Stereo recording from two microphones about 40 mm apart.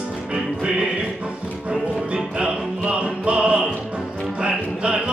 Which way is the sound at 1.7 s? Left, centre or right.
Right.